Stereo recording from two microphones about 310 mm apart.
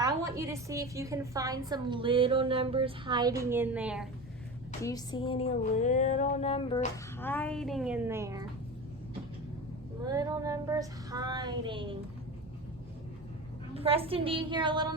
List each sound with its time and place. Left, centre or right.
0.0 s a woman's voice: centre
4.8 s music: centre
10.0 s a woman's voice: centre
13.7 s a woman's voice: centre